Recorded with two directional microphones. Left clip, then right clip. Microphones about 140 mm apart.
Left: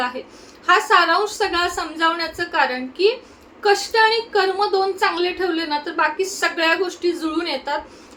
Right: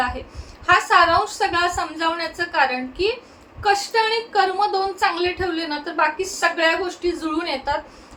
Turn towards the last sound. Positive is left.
turn(degrees=15)  # may be behind; listen again after turning